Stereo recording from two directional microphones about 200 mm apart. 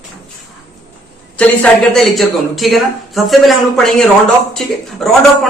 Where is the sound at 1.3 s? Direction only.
5° left (ahead or behind).